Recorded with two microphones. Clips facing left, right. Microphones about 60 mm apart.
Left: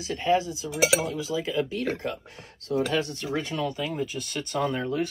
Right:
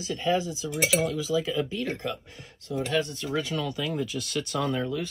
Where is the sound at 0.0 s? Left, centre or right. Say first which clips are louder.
Left 2 dB; left.